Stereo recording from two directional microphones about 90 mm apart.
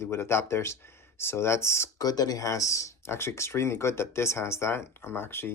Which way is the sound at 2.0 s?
45° left (ahead or behind).